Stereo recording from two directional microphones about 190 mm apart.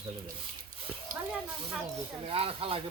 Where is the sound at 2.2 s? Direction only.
30° right (ahead or behind).